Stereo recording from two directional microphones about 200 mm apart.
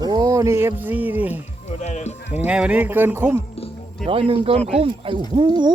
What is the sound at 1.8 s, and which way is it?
Speech, 35° left (ahead or behind).